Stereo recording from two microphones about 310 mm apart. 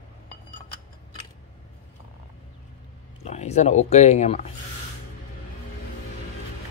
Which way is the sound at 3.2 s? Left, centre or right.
Left.